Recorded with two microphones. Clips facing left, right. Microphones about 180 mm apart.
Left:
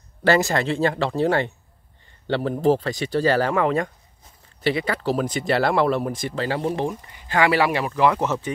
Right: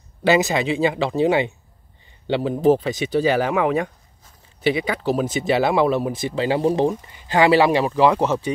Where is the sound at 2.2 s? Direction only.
15° right (ahead or behind).